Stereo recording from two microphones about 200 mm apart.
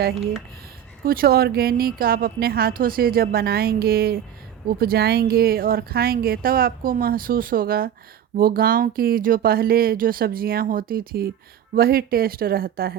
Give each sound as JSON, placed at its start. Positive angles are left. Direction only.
{"t": 1.0, "sound": "speech", "side_deg": -50}